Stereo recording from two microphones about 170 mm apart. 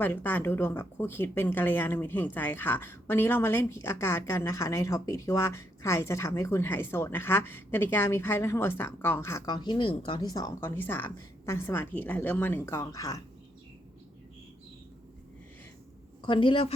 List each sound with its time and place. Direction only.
0.0 s a woman's voice: 10° left (ahead or behind)
16.2 s a woman's voice: 30° left (ahead or behind)